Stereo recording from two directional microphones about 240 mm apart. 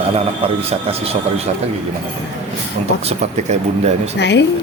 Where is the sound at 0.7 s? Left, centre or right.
Right.